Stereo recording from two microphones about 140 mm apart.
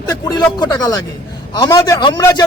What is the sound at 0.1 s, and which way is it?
A man's voice, 30° left (ahead or behind).